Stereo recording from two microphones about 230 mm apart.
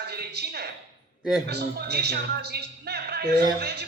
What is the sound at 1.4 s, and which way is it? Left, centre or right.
A man's voice, right.